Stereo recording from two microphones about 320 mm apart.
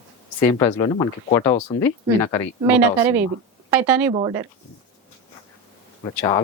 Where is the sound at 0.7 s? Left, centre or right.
Centre.